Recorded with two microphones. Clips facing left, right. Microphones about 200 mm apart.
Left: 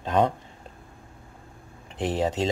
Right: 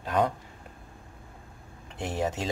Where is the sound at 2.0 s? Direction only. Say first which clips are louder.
Left 5 dB; 20° left (ahead or behind).